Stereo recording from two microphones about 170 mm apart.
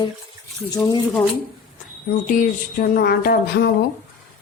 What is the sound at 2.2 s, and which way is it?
Speech, 50° left (ahead or behind).